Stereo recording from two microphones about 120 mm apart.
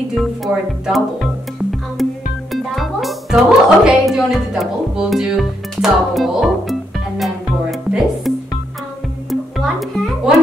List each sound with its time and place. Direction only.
0.1 s speech: centre (ahead or behind)
1.2 s music: centre (ahead or behind)
2.5 s speech: centre (ahead or behind)
8.3 s music: centre (ahead or behind)